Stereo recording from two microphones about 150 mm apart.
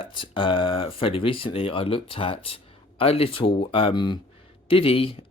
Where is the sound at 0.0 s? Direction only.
35° left (ahead or behind).